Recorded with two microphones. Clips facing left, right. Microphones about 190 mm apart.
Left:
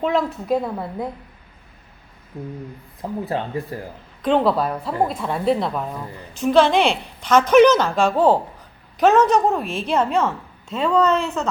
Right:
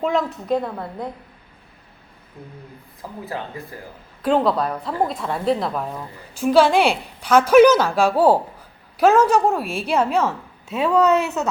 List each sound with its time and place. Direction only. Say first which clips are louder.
0.0 s a woman's voice: left 1 dB; centre (ahead or behind)
2.3 s a sound: left 8 dB; 30° left (ahead or behind)
3.0 s speech: left 6 dB; 25° left (ahead or behind)
4.2 s a woman's voice: left 1 dB; 5° right (ahead or behind)